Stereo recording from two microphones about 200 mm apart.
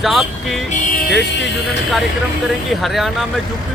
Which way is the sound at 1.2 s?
60° left (ahead or behind).